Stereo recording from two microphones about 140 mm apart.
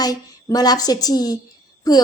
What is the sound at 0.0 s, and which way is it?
A woman's voice, 25° left (ahead or behind).